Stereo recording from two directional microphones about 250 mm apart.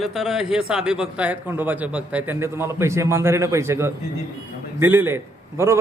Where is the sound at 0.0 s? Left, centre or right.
Centre.